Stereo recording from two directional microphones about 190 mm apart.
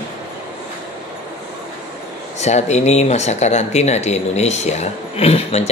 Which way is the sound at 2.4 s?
35° left (ahead or behind).